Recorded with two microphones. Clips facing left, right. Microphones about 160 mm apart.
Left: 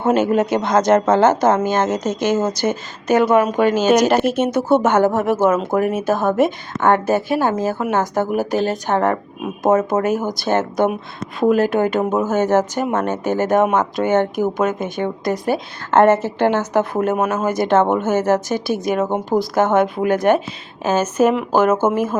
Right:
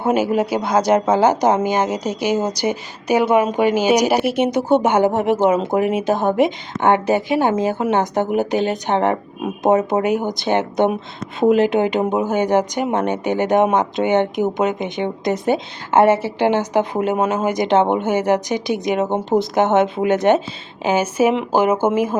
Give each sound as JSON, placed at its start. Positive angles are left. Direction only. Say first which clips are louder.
{"t": 0.0, "sound": "speech", "louder": "left 1 dB", "side_deg": -10}
{"t": 15.9, "sound": "speech", "louder": "left 1 dB", "side_deg": -10}